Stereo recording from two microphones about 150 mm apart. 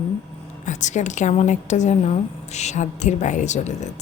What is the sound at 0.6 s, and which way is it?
A woman's voice, 55° left (ahead or behind).